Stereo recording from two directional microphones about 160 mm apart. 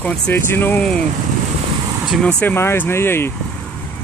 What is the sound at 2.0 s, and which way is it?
Speech, centre (ahead or behind).